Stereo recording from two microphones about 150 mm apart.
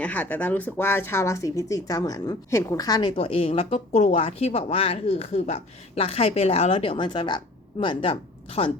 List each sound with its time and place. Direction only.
0.0 s speech: 10° left (ahead or behind); by 3.1 s 25° left (ahead or behind)
3.2 s a woman's voice: 40° left (ahead or behind)